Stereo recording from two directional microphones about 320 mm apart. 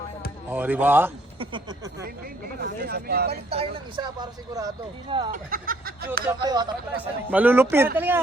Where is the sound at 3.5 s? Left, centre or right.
Centre.